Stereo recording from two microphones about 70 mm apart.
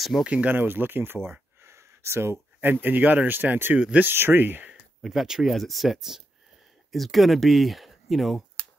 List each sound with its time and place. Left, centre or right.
0.2 s speech: centre
1.6 s a sound: right
2.6 s speech: right
3.7 s speech: centre
4.1 s speech: right
5.0 s speech: centre